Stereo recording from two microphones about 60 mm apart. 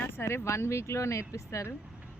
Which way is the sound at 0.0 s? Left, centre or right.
Left.